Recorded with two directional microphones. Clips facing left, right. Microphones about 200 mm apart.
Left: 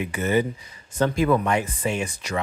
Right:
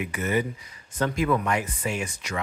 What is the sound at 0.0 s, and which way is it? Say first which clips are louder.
Speech: left 4 dB; 30° left (ahead or behind).